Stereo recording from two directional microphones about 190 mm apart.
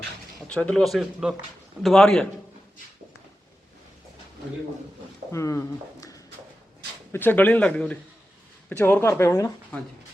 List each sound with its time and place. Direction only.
0.4 s speech: 5° left (ahead or behind)
5.3 s speech: 15° left (ahead or behind)